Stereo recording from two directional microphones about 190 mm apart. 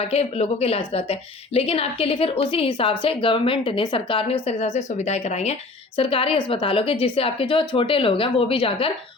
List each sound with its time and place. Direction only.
0.0 s a woman's voice: 35° left (ahead or behind)